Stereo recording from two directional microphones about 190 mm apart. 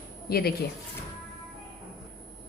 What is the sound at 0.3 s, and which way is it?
Speech, 55° left (ahead or behind).